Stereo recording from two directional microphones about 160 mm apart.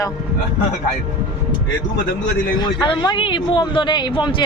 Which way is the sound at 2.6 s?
30° left (ahead or behind).